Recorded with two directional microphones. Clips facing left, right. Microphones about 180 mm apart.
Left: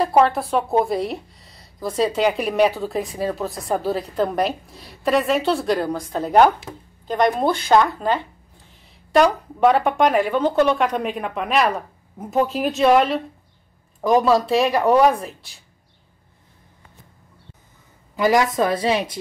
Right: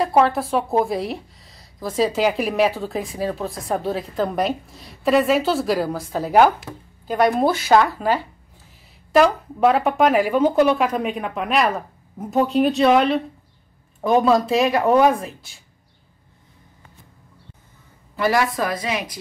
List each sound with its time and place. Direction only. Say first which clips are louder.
0.0 s speech: left 1 dB; centre (ahead or behind)
18.1 s a woman's voice: left 2 dB; 15° left (ahead or behind)